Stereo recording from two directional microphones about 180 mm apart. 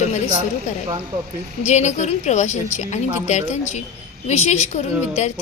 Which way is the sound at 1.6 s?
40° left (ahead or behind).